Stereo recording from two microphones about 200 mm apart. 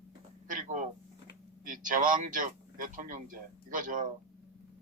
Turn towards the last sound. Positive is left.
turn(degrees=-40)  # may be behind; listen again after turning